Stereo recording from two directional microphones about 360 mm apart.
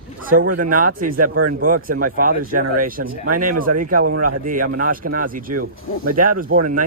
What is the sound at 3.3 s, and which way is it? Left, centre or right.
Speech, right.